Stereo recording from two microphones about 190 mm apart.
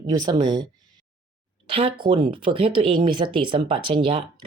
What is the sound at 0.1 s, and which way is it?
Speech, 20° right (ahead or behind).